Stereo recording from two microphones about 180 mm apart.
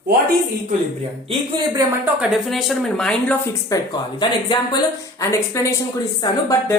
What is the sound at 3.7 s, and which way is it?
Speech, 25° left (ahead or behind).